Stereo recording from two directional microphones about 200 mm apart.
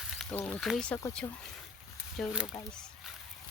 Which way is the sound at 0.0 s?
Centre (ahead or behind).